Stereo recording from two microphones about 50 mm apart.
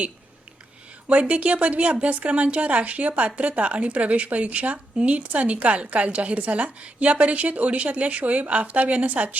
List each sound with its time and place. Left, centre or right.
1.0 s a woman's voice: right